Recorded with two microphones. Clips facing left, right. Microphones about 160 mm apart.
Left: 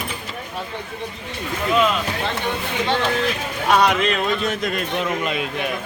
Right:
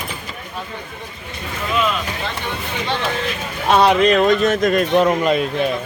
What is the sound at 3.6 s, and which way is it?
Speech, 30° right (ahead or behind).